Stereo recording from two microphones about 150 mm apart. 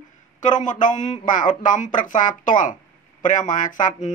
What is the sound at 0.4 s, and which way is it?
Speech, 55° left (ahead or behind).